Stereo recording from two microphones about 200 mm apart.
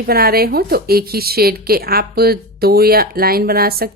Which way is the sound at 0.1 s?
50° right (ahead or behind).